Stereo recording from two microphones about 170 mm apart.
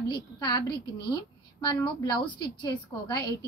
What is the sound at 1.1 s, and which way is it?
A woman's voice, 25° left (ahead or behind).